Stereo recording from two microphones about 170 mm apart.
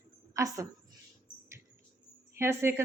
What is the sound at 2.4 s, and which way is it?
Speech, 15° right (ahead or behind).